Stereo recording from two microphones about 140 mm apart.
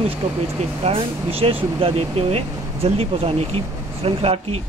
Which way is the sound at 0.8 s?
45° right (ahead or behind).